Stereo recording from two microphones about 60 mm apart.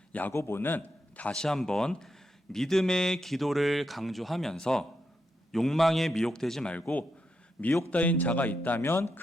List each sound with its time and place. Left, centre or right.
0.1 s a man's voice: left
0.3 s a man's voice: left
1.3 s a man's voice: centre
7.9 s a man's voice: left
8.8 s speech: left